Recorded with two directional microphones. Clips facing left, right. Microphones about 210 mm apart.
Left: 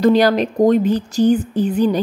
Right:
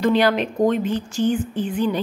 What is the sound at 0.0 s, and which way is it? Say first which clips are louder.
A woman's voice: left 5 dB; 40° left (ahead or behind).